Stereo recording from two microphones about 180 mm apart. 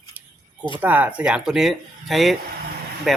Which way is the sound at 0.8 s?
10° right (ahead or behind).